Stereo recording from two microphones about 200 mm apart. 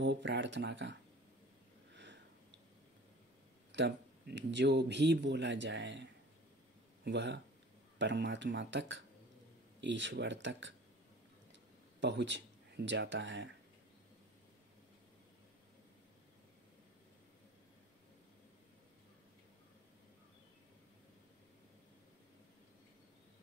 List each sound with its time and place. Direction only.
0.0 s speech: 65° right (ahead or behind)
3.7 s speech: 60° right (ahead or behind)
7.1 s speech: 60° right (ahead or behind)
12.0 s speech: 60° right (ahead or behind)